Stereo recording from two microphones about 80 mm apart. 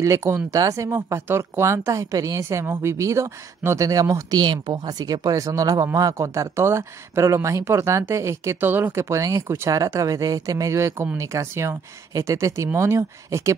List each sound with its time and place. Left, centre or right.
0.0 s speech: right
4.5 s speech: right
8.6 s speech: right
9.1 s speech: right